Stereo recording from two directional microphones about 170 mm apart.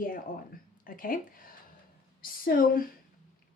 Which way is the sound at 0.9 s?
55° left (ahead or behind).